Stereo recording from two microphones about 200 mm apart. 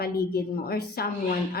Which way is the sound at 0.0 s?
50° left (ahead or behind).